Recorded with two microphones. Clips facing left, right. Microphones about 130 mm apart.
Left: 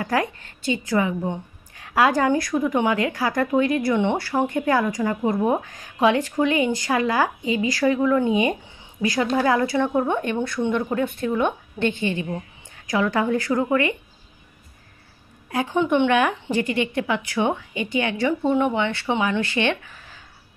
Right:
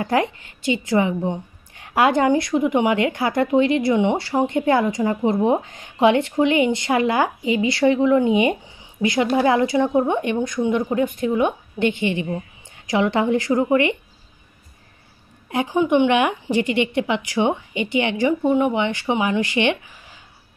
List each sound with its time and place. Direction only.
0.0 s a woman's voice: 25° right (ahead or behind)
15.7 s speech: 5° right (ahead or behind)
16.1 s a woman's voice: 20° right (ahead or behind)